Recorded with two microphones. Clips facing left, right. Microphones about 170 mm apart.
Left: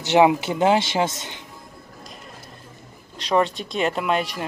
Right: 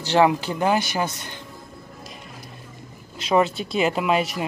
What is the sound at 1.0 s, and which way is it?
Speech, 90° left.